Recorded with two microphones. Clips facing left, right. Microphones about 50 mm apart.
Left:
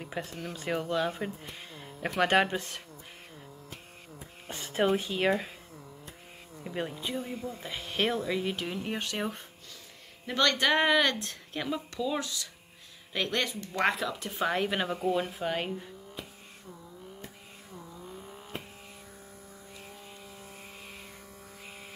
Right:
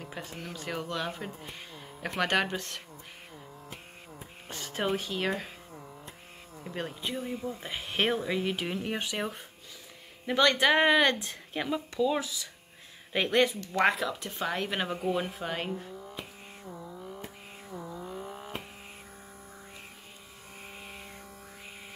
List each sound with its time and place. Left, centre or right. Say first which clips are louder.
0.3 s speech: left 3 dB; centre
1.5 s a sound: even; centre
2.0 s speech: left 3 dB; centre
4.5 s a sound: left 5 dB; centre
4.9 s speech: left 3 dB; centre
6.6 s speech: left 1 dB; centre
13.7 s speech: right 2 dB; centre